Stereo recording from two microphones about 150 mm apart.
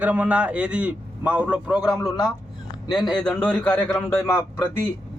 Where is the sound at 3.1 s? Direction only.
10° left (ahead or behind).